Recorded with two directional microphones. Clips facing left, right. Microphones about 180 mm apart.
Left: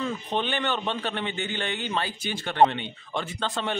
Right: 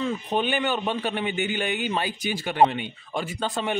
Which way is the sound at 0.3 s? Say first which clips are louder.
Right 3 dB; 15° right (ahead or behind).